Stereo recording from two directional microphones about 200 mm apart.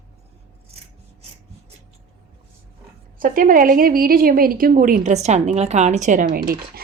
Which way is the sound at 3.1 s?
45° right (ahead or behind).